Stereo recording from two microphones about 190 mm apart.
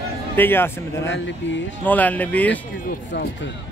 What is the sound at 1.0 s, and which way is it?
Speech, 75° left (ahead or behind).